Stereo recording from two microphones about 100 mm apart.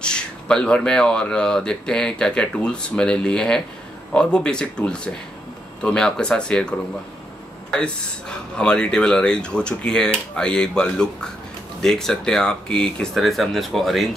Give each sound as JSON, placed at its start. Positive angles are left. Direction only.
{"t": 0.0, "sound": "speech", "side_deg": 10}
{"t": 7.8, "sound": "speech", "side_deg": 10}